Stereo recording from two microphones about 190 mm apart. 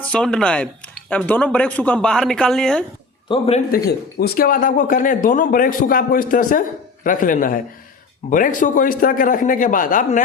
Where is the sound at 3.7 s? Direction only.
55° left (ahead or behind).